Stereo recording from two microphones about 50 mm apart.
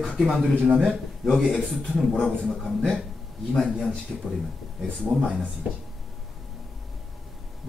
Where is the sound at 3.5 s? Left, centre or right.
Centre.